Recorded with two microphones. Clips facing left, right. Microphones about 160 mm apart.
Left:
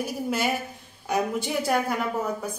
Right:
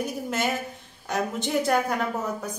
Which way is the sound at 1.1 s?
5° left (ahead or behind).